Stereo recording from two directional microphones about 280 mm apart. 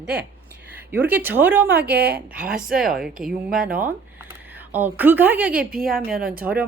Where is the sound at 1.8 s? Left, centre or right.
Right.